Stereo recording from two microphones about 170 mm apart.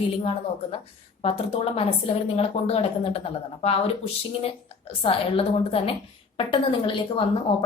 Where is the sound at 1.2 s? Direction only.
35° left (ahead or behind).